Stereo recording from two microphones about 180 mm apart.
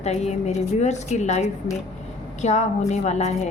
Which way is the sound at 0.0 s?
40° left (ahead or behind).